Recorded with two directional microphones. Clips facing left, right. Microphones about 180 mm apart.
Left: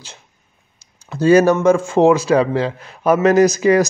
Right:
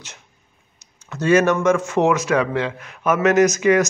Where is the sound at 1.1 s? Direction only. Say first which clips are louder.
Left 4 dB; 35° left (ahead or behind).